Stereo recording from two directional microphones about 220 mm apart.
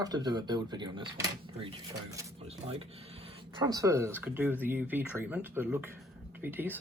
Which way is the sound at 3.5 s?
20° right (ahead or behind).